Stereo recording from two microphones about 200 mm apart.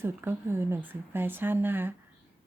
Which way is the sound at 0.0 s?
10° right (ahead or behind).